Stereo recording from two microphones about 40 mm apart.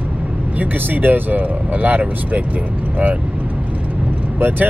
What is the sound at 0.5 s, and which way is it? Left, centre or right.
Speech, right.